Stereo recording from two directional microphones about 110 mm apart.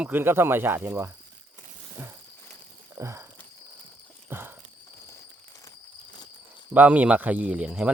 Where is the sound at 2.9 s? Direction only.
25° right (ahead or behind).